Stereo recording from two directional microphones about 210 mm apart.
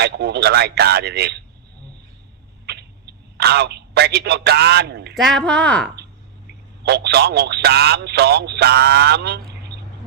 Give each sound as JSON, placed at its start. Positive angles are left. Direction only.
{"t": 0.0, "sound": "speech", "side_deg": -50}
{"t": 2.6, "sound": "a sound", "side_deg": -50}
{"t": 5.1, "sound": "speech", "side_deg": 0}
{"t": 6.8, "sound": "speech", "side_deg": -50}